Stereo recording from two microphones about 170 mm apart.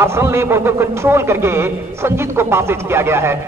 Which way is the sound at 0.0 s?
15° right (ahead or behind).